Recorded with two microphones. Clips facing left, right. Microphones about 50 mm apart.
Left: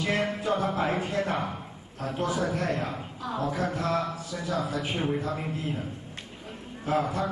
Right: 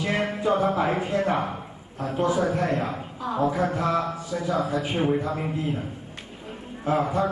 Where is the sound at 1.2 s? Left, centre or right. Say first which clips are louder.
Right 5 dB; right.